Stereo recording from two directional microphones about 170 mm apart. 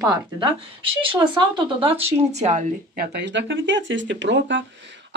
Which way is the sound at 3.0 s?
85° right.